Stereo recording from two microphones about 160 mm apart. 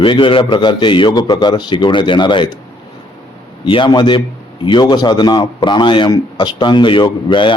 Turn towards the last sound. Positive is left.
turn(degrees=30)  # may be behind; listen again after turning